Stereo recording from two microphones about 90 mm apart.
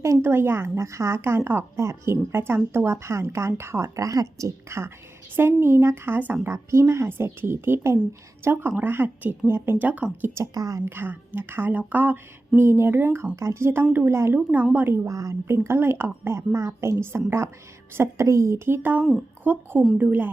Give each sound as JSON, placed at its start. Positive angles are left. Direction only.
{"t": 0.0, "sound": "a woman's voice", "side_deg": -30}
{"t": 10.3, "sound": "a woman's voice", "side_deg": -40}
{"t": 10.8, "sound": "a woman's voice", "side_deg": -25}
{"t": 15.0, "sound": "a woman's voice", "side_deg": -35}